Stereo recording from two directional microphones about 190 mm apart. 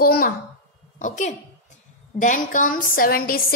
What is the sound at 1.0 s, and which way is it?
A woman's voice, 40° left (ahead or behind).